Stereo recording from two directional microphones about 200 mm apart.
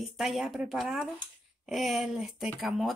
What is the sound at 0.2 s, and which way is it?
Speech, centre (ahead or behind).